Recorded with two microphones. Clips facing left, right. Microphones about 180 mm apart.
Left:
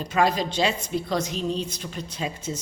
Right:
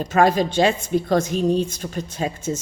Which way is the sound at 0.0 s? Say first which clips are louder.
Right 5 dB; 50° right (ahead or behind).